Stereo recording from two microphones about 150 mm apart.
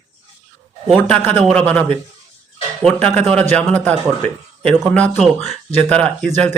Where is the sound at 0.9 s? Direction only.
10° left (ahead or behind).